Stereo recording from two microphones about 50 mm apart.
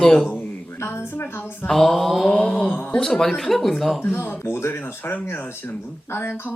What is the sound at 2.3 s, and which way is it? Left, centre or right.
Mantra, left.